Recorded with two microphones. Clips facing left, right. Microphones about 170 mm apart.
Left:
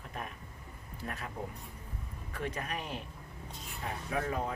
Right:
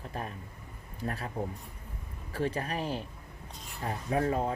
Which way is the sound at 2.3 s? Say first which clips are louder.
Right 6 dB; 30° right (ahead or behind).